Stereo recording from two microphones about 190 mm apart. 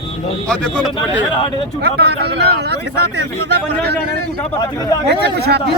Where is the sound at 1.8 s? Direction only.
60° right (ahead or behind).